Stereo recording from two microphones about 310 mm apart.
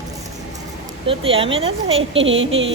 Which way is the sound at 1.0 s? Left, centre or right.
Centre.